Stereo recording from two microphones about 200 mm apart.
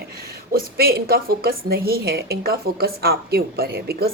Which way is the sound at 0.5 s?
50° right (ahead or behind).